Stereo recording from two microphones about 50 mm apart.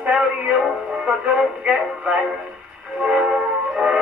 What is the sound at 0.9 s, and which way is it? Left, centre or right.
Music, centre.